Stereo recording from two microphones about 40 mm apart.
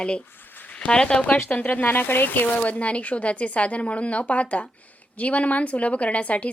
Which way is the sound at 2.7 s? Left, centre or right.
Left.